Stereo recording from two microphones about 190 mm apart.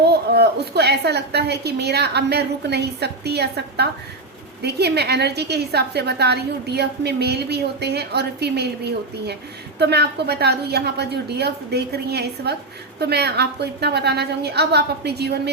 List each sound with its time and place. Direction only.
0.1 s a woman's voice: 60° right (ahead or behind)